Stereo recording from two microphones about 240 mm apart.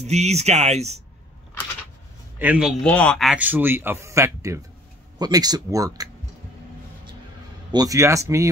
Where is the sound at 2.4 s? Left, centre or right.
Centre.